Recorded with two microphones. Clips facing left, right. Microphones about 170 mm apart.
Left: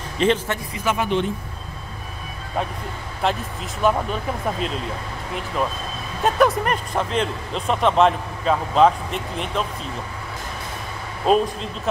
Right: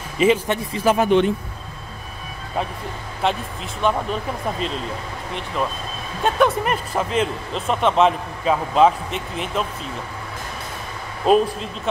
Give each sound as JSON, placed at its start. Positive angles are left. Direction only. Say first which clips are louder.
{"t": 0.2, "sound": "speech", "louder": "right 2 dB", "side_deg": -5}
{"t": 0.7, "sound": "speech", "louder": "right 6 dB", "side_deg": -40}
{"t": 3.2, "sound": "speech", "louder": "right 1 dB", "side_deg": 0}
{"t": 6.2, "sound": "speech", "louder": "even", "side_deg": 0}
{"t": 11.2, "sound": "speech", "louder": "right 2 dB", "side_deg": 0}